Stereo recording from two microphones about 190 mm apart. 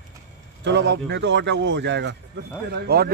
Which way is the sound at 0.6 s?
65° right (ahead or behind).